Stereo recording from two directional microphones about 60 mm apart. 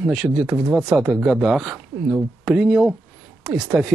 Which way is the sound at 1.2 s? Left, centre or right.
Centre.